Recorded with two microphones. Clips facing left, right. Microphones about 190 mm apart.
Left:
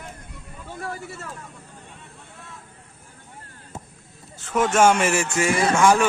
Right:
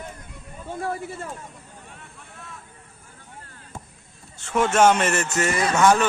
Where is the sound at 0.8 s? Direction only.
30° right (ahead or behind).